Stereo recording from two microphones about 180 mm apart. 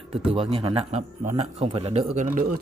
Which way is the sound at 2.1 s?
45° right (ahead or behind).